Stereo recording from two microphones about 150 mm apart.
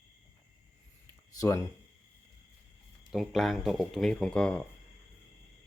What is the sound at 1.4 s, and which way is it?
Speech, 20° left (ahead or behind).